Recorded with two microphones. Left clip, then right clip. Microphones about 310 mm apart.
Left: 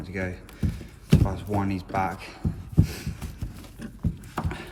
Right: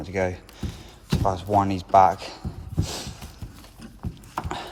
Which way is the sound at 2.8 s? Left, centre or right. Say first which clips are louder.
Even; centre.